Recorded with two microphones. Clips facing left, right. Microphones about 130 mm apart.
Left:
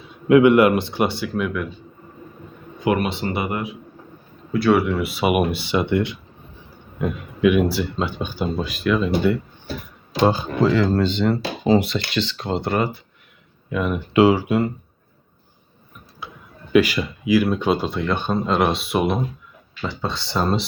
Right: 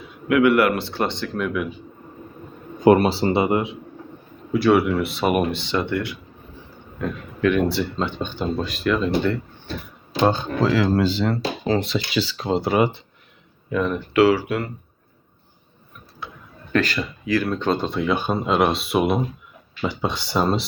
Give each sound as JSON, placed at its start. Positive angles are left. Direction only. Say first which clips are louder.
{"t": 0.3, "sound": "speech", "louder": "left 4 dB", "side_deg": 25}
{"t": 2.8, "sound": "speech", "louder": "right 6 dB", "side_deg": -35}
{"t": 4.5, "sound": "speech", "louder": "right 1 dB", "side_deg": 0}
{"t": 13.9, "sound": "speech", "louder": "left 2 dB", "side_deg": 20}
{"t": 16.7, "sound": "speech", "louder": "left 5 dB", "side_deg": 10}
{"t": 19.8, "sound": "speech", "louder": "right 2 dB", "side_deg": -15}